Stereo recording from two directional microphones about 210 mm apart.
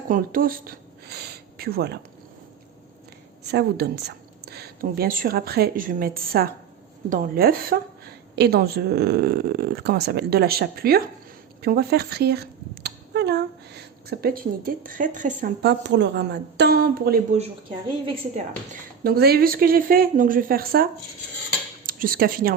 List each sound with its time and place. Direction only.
0.1 s speech: 45° right (ahead or behind)
3.4 s a woman's voice: 50° right (ahead or behind)
15.6 s speech: 55° right (ahead or behind)
18.0 s speech: 25° right (ahead or behind)
18.7 s speech: 45° right (ahead or behind)
21.8 s speech: 40° right (ahead or behind)